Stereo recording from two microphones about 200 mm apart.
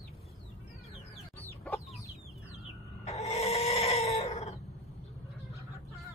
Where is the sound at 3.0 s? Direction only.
30° left (ahead or behind).